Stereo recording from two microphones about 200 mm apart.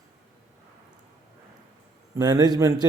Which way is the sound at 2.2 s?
20° right (ahead or behind).